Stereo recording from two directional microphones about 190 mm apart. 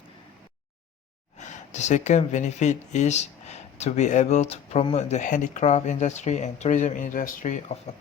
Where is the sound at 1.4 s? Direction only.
40° left (ahead or behind).